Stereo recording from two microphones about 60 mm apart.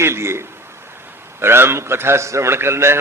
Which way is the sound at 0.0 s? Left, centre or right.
Right.